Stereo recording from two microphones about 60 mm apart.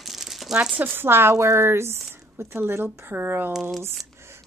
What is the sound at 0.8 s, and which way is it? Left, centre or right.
A woman's voice, right.